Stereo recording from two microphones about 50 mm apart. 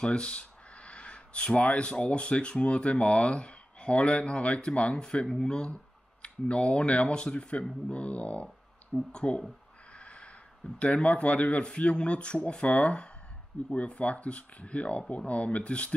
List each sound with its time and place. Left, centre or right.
0.0 s speech: left
9.9 s a sound: left
10.8 s speech: left